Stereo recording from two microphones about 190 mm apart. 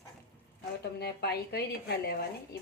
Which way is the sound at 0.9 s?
60° left (ahead or behind).